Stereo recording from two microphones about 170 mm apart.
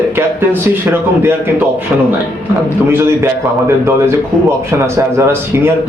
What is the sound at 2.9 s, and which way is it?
A man's voice, 15° right (ahead or behind).